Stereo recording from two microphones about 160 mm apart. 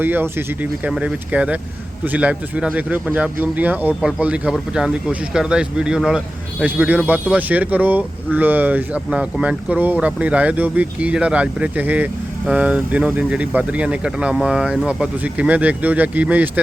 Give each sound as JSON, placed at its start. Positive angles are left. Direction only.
{"t": 0.0, "sound": "a man's voice", "side_deg": -10}